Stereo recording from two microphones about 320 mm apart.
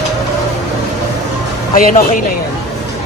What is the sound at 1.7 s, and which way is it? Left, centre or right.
Speech, left.